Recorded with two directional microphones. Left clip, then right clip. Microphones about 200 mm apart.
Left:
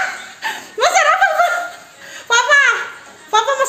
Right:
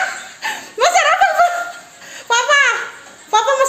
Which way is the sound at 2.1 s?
10° right (ahead or behind).